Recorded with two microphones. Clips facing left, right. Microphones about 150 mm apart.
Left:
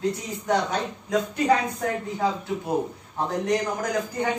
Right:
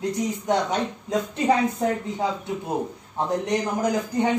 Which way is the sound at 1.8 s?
25° right (ahead or behind).